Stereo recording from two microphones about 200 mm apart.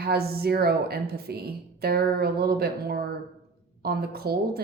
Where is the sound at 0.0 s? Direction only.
50° right (ahead or behind).